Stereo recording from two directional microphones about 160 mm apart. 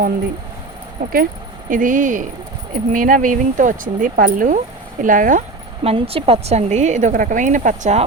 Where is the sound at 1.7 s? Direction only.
55° right (ahead or behind).